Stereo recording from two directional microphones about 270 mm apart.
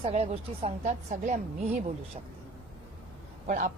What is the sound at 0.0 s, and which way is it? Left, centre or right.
A woman's voice, right.